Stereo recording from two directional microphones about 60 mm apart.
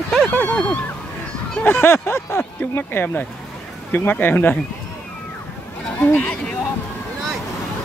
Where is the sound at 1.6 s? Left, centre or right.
Left.